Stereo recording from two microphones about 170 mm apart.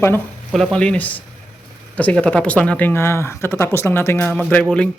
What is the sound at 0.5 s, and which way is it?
Speech, 5° left (ahead or behind).